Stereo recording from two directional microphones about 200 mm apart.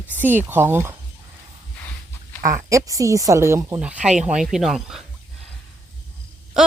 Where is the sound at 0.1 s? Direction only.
10° right (ahead or behind).